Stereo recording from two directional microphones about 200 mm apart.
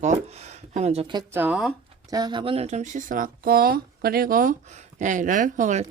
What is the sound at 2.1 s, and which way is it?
Speech, 20° right (ahead or behind).